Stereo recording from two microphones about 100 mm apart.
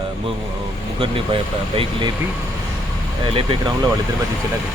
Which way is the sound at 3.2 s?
60° right (ahead or behind).